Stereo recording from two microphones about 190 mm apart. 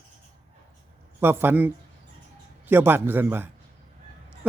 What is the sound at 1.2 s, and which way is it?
Speech, 10° right (ahead or behind).